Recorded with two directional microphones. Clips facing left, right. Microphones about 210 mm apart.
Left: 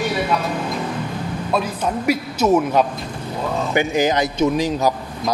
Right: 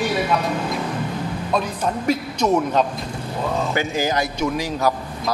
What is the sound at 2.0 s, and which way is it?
Speech, 10° left (ahead or behind).